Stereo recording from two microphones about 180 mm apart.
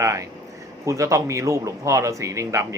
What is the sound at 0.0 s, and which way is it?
Speech, 15° right (ahead or behind).